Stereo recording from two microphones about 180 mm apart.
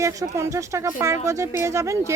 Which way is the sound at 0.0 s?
15° right (ahead or behind).